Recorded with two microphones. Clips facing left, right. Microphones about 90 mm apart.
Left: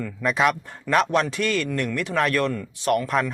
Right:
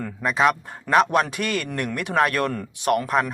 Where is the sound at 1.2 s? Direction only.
55° right (ahead or behind).